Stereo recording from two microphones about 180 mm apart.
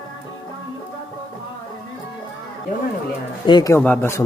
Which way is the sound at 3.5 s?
20° left (ahead or behind).